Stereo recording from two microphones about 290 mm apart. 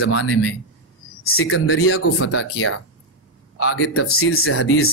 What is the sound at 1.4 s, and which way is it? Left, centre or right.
Speech, left.